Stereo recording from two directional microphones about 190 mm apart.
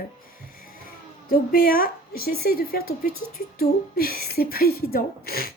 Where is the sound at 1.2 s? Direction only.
50° left (ahead or behind).